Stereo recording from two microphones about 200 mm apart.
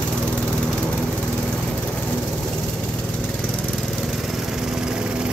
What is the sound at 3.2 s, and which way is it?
Lawn mower, 5° left (ahead or behind).